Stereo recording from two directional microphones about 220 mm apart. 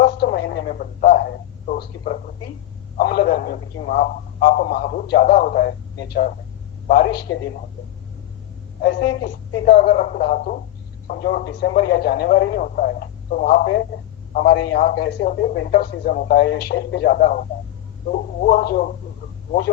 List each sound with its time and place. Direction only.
0.0 s radio: 45° left (ahead or behind)
3.0 s speech: 45° left (ahead or behind)
8.8 s speech: 45° left (ahead or behind)